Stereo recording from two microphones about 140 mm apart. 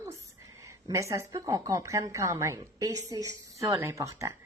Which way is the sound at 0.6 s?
25° right (ahead or behind).